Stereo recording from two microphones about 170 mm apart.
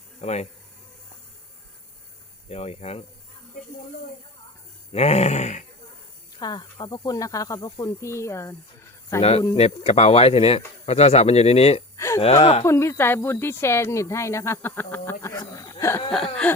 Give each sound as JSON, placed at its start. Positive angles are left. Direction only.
{"t": 0.2, "sound": "speech", "side_deg": 40}
{"t": 2.5, "sound": "speech", "side_deg": 40}
{"t": 4.9, "sound": "speech", "side_deg": 40}
{"t": 6.4, "sound": "speech", "side_deg": 25}
{"t": 9.6, "sound": "speech", "side_deg": 35}
{"t": 11.9, "sound": "a sound", "side_deg": 15}
{"t": 12.2, "sound": "speech", "side_deg": 35}
{"t": 12.6, "sound": "speech", "side_deg": 15}
{"t": 16.1, "sound": "a sound", "side_deg": 0}